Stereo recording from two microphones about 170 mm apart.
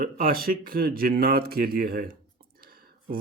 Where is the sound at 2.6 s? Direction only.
60° right (ahead or behind).